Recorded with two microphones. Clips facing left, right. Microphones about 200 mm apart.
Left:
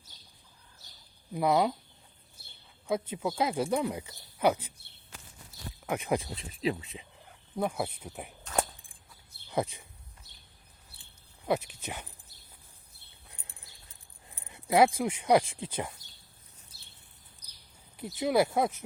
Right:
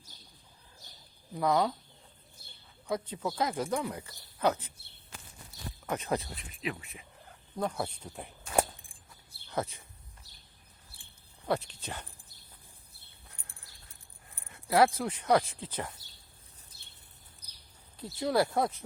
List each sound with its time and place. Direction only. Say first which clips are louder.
1.3 s speech: left 2 dB; 15° left (ahead or behind)
2.8 s speech: left 3 dB; 25° left (ahead or behind)
3.2 s speech: left 2 dB; 10° left (ahead or behind)
5.8 s speech: left 2 dB; 10° left (ahead or behind)
6.3 s speech: left 6 dB; 30° left (ahead or behind)
7.5 s speech: left 2 dB; 10° left (ahead or behind)
9.5 s speech: left 3 dB; 15° left (ahead or behind)
11.8 s speech: left 1 dB; 15° left (ahead or behind)
13.3 s a sound: left 3 dB; 20° left (ahead or behind)
14.3 s keys jangling: left 2 dB; 20° left (ahead or behind)
14.9 s speech: left 2 dB; 15° left (ahead or behind)
18.0 s speech: left 2 dB; 20° left (ahead or behind)